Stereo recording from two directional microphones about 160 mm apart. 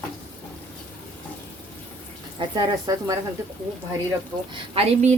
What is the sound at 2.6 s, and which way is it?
Speech, 25° right (ahead or behind).